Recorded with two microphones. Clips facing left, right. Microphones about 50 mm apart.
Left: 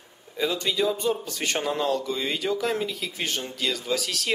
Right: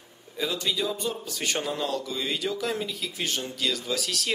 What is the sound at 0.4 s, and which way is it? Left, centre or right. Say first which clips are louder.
Speech: left 3 dB; centre.